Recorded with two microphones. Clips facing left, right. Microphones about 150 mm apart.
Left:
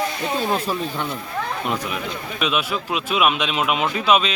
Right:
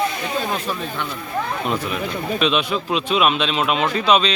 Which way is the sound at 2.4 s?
10° left (ahead or behind).